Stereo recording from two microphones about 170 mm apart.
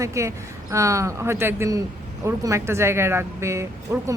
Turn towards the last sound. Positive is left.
turn(degrees=-15)  # may be behind; listen again after turning